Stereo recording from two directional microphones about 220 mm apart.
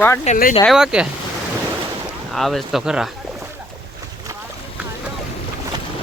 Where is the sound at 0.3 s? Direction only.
40° left (ahead or behind).